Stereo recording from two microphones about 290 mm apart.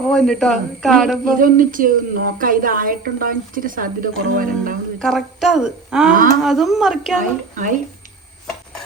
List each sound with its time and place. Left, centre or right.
0.1 s a woman's voice: centre
1.4 s a woman's voice: right
4.9 s a woman's voice: centre
7.2 s a woman's voice: right